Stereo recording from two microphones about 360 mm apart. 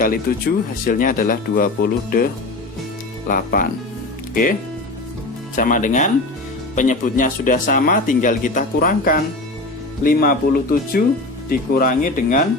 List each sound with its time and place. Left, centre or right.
0.0 s speech: left
3.2 s speech: left
5.5 s speech: left